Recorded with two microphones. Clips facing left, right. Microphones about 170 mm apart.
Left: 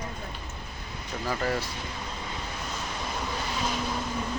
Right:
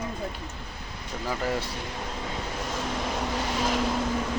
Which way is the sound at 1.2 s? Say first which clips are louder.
Even; 10° right (ahead or behind).